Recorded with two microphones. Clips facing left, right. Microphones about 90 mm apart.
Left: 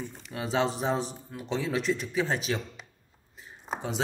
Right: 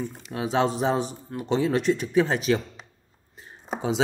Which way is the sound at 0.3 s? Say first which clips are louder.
Right 5 dB; 40° right (ahead or behind).